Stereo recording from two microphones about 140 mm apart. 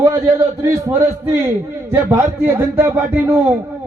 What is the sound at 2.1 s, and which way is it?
A man's voice, 15° right (ahead or behind).